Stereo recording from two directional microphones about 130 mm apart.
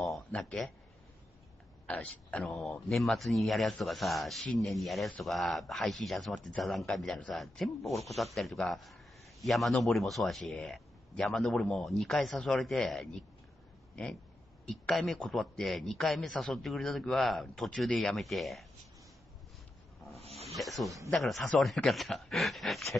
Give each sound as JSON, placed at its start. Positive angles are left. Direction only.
{"t": 0.0, "sound": "a sound", "side_deg": 0}
{"t": 1.9, "sound": "a man's voice", "side_deg": 10}
{"t": 14.7, "sound": "a man's voice", "side_deg": 0}
{"t": 20.2, "sound": "snake", "side_deg": -50}
{"t": 20.5, "sound": "snake", "side_deg": 0}
{"t": 21.1, "sound": "a man's voice", "side_deg": 0}